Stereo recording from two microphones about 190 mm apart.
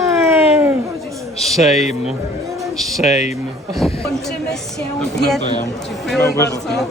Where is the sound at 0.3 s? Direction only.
10° right (ahead or behind).